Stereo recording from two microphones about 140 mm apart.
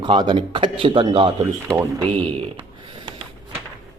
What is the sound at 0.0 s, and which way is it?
A man's voice, 35° right (ahead or behind).